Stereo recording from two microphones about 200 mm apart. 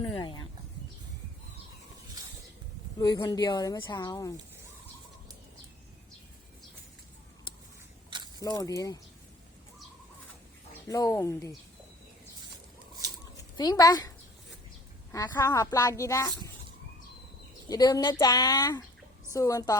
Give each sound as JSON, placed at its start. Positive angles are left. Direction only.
{"t": 0.0, "sound": "a sound", "side_deg": 25}
{"t": 3.0, "sound": "speech", "side_deg": 20}
{"t": 8.4, "sound": "a woman's voice", "side_deg": 20}
{"t": 10.8, "sound": "a woman's voice", "side_deg": 15}
{"t": 13.3, "sound": "speech", "side_deg": 20}
{"t": 15.1, "sound": "a woman's voice", "side_deg": 15}
{"t": 17.7, "sound": "a woman's voice", "side_deg": 20}